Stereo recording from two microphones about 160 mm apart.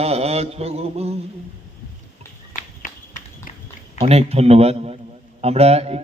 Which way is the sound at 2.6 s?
55° left (ahead or behind).